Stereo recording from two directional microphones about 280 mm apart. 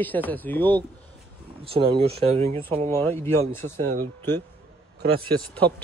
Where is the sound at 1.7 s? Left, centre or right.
Centre.